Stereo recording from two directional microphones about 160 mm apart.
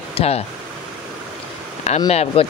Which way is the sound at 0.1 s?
40° left (ahead or behind).